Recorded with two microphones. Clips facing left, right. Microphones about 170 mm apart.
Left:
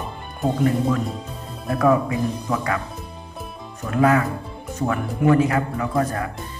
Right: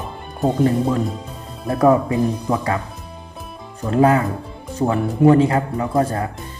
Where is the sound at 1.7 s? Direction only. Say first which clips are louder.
Right 3 dB; 30° right (ahead or behind).